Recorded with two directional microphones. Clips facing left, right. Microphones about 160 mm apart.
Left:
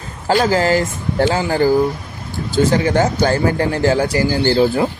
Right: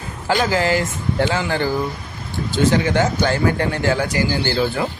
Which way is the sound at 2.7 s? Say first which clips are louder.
Left 2 dB; 40° left (ahead or behind).